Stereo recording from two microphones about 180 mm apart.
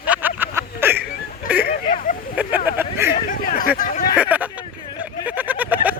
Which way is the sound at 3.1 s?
50° left (ahead or behind).